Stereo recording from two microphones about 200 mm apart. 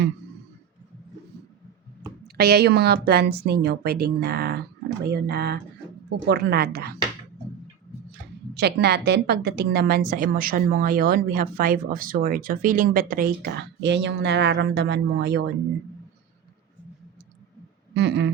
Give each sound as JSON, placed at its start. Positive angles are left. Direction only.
{"t": 2.2, "sound": "a woman's voice", "side_deg": -50}
{"t": 8.5, "sound": "a woman's voice", "side_deg": -55}
{"t": 17.9, "sound": "a sound", "side_deg": -60}